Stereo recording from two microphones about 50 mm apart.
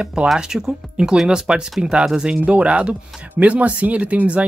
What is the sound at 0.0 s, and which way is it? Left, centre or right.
Speech, centre.